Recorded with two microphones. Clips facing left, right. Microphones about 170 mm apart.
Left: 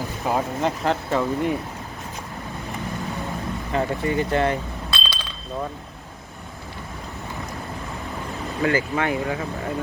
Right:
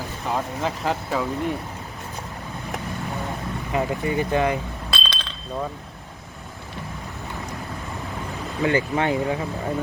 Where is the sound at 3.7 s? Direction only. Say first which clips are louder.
Left 1 dB; 15° right (ahead or behind).